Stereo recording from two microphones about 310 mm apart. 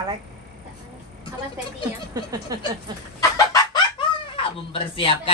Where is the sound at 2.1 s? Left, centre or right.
Centre.